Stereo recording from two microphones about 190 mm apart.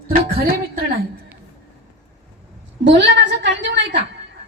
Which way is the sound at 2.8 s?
65° right (ahead or behind).